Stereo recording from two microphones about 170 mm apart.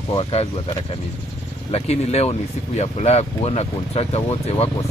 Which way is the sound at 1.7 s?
40° left (ahead or behind).